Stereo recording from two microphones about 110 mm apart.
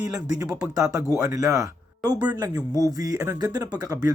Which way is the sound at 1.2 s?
30° right (ahead or behind).